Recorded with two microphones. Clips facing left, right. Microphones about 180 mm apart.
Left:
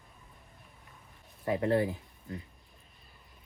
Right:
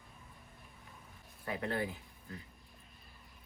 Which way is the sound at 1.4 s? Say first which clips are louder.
Left 9 dB; 25° left (ahead or behind).